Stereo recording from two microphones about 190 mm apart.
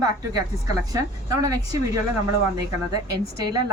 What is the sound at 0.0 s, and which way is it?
A woman's voice, 20° right (ahead or behind).